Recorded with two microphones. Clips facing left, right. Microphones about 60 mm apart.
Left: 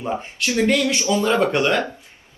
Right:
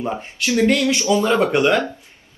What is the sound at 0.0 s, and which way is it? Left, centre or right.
Speech, centre.